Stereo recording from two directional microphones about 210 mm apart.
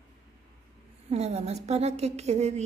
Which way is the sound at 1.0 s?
30° right (ahead or behind).